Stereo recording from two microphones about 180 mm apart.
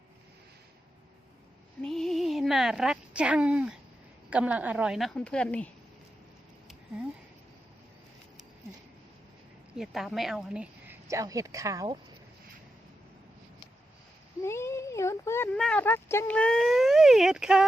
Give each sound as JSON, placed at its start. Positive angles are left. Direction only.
{"t": 1.8, "sound": "a woman's voice", "side_deg": 0}
{"t": 9.7, "sound": "a woman's voice", "side_deg": 0}
{"t": 14.4, "sound": "speech", "side_deg": 15}